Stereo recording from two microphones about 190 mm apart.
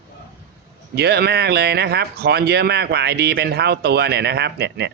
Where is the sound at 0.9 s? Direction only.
60° right (ahead or behind).